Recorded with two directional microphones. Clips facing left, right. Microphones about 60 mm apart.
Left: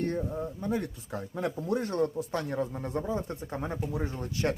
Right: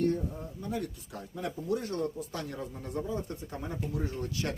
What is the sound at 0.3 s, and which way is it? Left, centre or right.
Speech, left.